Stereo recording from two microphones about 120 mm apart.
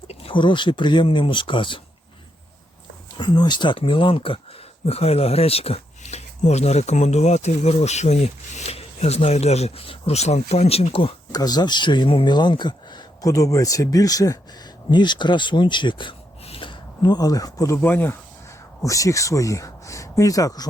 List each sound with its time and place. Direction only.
0.1 s speech: 50° left (ahead or behind)
3.2 s speech: 40° left (ahead or behind)
4.9 s speech: 60° left (ahead or behind)
11.3 s speech: 35° left (ahead or behind)